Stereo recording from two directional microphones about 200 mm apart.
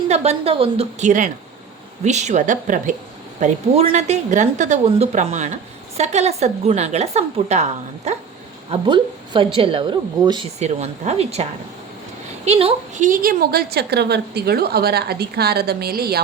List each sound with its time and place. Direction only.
0.1 s a woman's voice: 30° right (ahead or behind)
8.7 s speech: 25° right (ahead or behind)
10.6 s a woman's voice: 35° right (ahead or behind)
12.5 s a woman's voice: 30° right (ahead or behind); by 16.2 s 50° right (ahead or behind)